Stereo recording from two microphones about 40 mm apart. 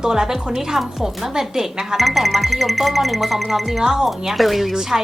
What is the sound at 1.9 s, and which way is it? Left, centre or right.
Speech, centre.